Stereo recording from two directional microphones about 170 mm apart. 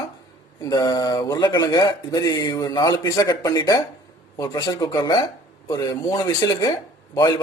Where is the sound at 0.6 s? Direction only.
20° left (ahead or behind).